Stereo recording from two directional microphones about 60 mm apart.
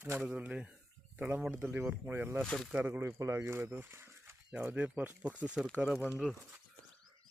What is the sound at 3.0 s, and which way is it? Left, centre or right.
Speech, right.